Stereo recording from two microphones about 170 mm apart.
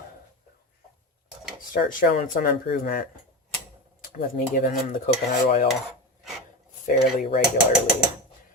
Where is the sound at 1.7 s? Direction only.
55° left (ahead or behind).